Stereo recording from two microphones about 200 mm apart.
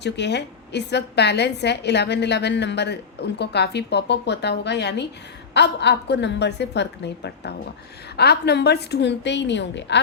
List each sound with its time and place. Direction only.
0.0 s a woman's voice: 60° left (ahead or behind)